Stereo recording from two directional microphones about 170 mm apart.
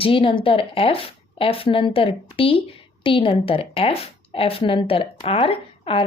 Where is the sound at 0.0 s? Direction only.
30° left (ahead or behind).